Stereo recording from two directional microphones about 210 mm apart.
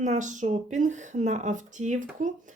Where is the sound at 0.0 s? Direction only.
35° right (ahead or behind).